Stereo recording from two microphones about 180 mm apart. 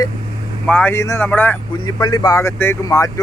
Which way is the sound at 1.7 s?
20° left (ahead or behind).